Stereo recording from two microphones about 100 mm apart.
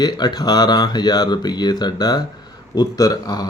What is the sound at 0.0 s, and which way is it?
Speech, 45° left (ahead or behind).